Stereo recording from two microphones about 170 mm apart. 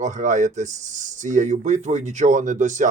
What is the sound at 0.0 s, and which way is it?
Speech, 45° right (ahead or behind).